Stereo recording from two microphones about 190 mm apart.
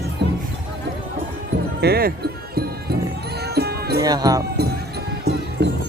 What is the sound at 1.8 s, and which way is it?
Music, 55° right (ahead or behind).